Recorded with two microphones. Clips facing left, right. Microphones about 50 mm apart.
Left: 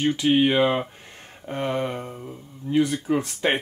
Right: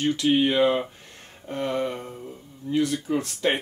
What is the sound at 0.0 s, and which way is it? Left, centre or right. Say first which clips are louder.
Speech: left 2 dB; left.